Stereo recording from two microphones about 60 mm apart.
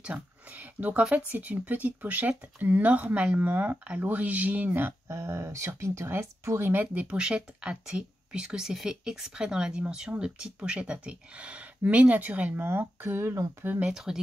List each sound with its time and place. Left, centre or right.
0.0 s speech: right
5.0 s speech: right
6.6 s speech: right
13.8 s speech: centre